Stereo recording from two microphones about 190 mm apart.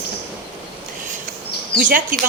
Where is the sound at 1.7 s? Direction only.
45° right (ahead or behind).